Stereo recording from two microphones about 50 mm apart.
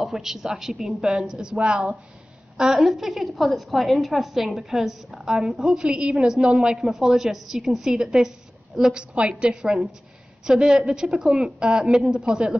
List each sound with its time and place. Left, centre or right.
0.0 s a woman's voice: centre